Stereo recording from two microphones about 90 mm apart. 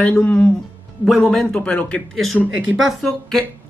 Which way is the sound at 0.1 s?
20° left (ahead or behind).